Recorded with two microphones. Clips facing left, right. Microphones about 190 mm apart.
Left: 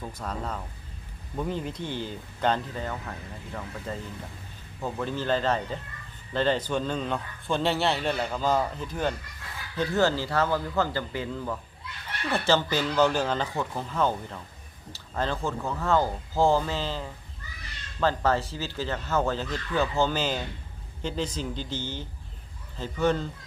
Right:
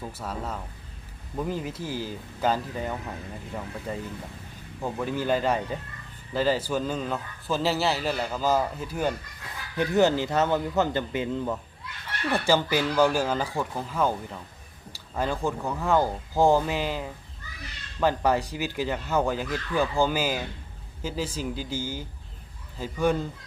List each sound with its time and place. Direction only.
0.0 s a man's voice: 5° right (ahead or behind)